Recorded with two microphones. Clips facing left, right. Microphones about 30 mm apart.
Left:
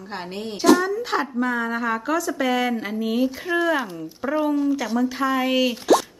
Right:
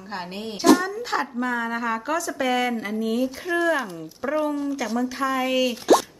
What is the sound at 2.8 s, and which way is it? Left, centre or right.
Speech, centre.